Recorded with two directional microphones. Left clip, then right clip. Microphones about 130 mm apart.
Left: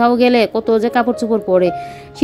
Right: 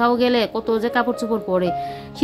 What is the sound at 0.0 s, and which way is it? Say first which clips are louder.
A woman's voice: left 5 dB; 30° left (ahead or behind).